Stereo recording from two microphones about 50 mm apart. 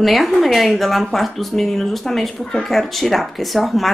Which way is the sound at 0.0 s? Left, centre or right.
Centre.